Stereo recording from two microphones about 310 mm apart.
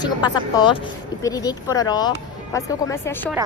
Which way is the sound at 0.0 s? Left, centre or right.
Centre.